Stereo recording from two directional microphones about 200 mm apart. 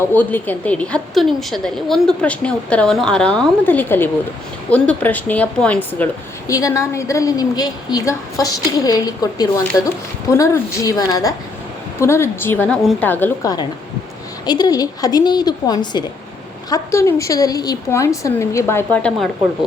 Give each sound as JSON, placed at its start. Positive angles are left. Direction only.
{"t": 0.0, "sound": "a woman's voice", "side_deg": 10}